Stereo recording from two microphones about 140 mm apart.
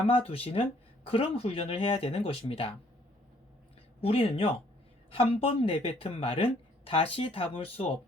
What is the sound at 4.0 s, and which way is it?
Speech, 45° left (ahead or behind).